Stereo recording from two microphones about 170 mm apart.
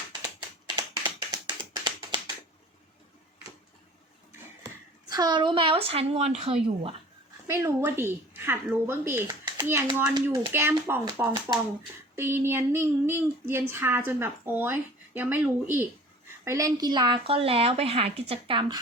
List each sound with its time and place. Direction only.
0.8 s tap: 25° right (ahead or behind)
4.3 s speech: 20° right (ahead or behind)
7.5 s child singing: 15° right (ahead or behind)
16.4 s speech: 20° right (ahead or behind)